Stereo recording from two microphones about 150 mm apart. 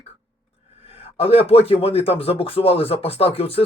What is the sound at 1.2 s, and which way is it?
Speech, 40° left (ahead or behind).